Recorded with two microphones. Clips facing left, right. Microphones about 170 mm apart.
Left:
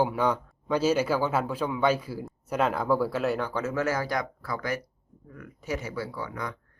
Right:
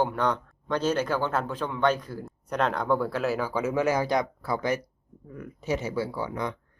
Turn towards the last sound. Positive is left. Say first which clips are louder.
# right 4 dB
turn(degrees=-25)  # may be behind; listen again after turning